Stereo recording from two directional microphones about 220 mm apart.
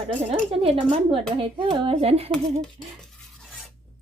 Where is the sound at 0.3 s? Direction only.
25° right (ahead or behind).